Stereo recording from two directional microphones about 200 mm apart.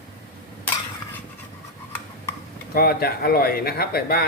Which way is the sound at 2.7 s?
50° left (ahead or behind).